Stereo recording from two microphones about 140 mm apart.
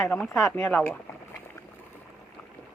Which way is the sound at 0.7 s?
15° left (ahead or behind).